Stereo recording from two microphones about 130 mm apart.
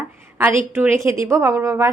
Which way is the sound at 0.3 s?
20° right (ahead or behind).